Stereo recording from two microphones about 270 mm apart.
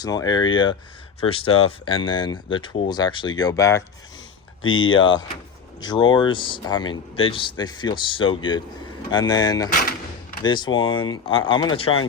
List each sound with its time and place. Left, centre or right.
0.0 s speech: centre
4.9 s speech: centre